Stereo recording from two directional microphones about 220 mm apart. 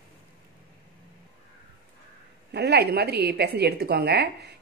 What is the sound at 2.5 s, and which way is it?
A woman's voice, 50° right (ahead or behind).